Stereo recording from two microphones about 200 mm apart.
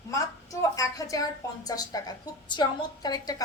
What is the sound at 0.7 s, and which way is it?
A woman's voice, 15° left (ahead or behind).